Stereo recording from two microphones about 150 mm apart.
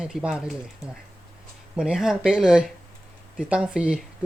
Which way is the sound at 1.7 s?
5° right (ahead or behind).